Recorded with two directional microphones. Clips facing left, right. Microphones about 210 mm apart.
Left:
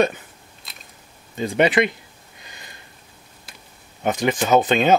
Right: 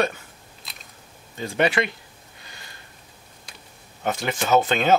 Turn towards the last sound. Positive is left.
turn(degrees=15)  # may be behind; listen again after turning